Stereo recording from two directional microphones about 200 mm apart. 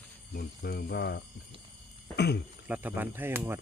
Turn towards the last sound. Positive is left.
turn(degrees=-10)  # may be behind; listen again after turning